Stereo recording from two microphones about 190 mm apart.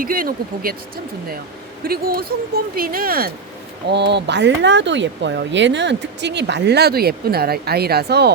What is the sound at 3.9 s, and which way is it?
Speech, 65° right (ahead or behind).